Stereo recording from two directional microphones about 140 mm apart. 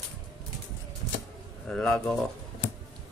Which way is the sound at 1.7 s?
5° left (ahead or behind).